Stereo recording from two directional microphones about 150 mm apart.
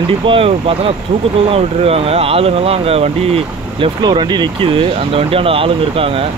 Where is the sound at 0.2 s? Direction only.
40° right (ahead or behind).